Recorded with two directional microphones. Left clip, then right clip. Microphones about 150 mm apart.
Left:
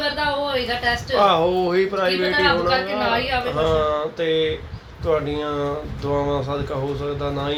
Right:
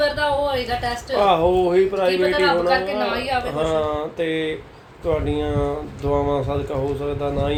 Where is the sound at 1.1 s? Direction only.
Centre (ahead or behind).